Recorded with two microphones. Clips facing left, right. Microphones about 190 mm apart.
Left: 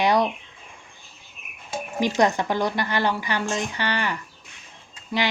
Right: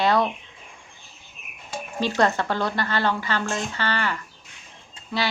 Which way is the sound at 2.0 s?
15° left (ahead or behind).